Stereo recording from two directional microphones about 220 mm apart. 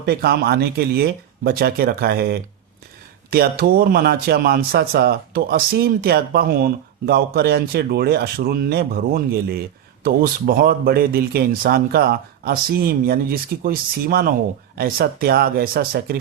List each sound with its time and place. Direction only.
0.0 s speech: 45° right (ahead or behind)